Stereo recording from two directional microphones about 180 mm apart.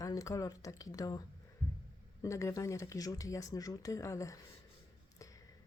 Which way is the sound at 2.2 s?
15° left (ahead or behind).